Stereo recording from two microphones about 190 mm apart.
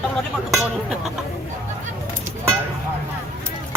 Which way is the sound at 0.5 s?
Centre (ahead or behind).